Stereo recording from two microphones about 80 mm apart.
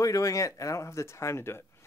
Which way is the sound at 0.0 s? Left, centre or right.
Left.